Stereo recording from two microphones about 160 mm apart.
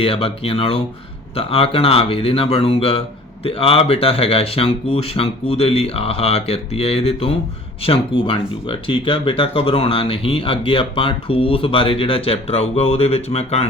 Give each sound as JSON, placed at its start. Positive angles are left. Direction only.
{"t": 0.0, "sound": "speech", "side_deg": 35}